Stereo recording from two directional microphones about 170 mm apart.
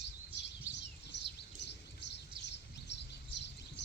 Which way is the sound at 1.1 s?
90° left.